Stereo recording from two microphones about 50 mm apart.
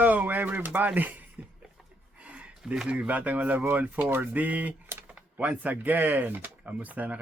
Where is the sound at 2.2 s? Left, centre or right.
Right.